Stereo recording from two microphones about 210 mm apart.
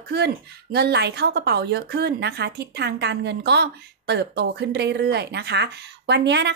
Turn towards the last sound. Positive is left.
turn(degrees=-55)  # may be behind; listen again after turning